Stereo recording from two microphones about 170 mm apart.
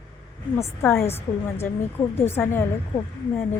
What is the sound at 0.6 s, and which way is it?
A woman's voice, 15° left (ahead or behind).